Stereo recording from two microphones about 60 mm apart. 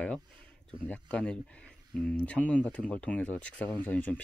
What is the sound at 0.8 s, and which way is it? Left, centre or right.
Speech, left.